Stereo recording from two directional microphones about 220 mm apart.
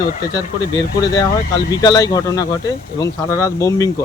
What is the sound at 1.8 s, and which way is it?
Speech, 20° left (ahead or behind).